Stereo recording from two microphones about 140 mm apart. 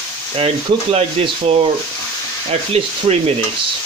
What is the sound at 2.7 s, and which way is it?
Speech, 45° right (ahead or behind).